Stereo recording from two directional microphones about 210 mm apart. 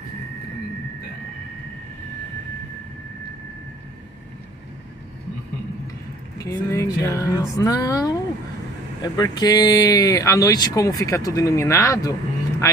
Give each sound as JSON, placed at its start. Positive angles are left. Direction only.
{"t": 6.3, "sound": "speech", "side_deg": 15}